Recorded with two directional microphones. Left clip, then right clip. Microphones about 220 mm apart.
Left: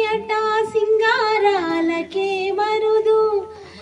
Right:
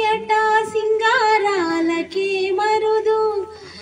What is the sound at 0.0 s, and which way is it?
Female singing, 50° right (ahead or behind).